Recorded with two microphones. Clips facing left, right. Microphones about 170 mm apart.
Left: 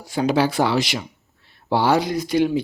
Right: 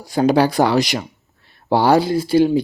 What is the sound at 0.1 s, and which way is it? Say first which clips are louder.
Speech: right 4 dB; 40° right (ahead or behind).